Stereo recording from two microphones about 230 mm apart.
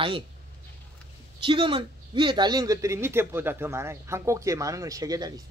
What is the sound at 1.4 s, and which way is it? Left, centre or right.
Speech, right.